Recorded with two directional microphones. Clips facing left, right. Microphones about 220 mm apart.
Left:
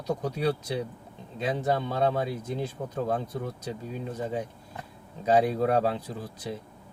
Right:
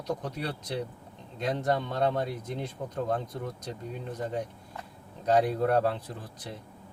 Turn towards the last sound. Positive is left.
turn(degrees=5)  # may be behind; listen again after turning